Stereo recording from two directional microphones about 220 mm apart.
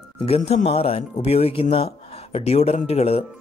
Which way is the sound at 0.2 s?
30° left (ahead or behind).